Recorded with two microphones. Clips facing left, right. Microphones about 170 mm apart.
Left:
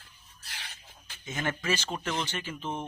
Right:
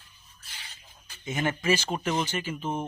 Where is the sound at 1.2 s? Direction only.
15° right (ahead or behind).